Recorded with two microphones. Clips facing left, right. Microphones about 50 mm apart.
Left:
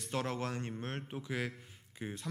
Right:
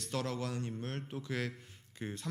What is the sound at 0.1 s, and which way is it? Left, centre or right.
Speech, left.